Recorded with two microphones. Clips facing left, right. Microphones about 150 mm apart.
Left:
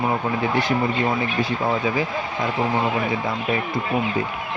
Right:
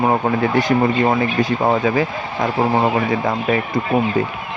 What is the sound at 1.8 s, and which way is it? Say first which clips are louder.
Speech: right 5 dB; 70° right (ahead or behind).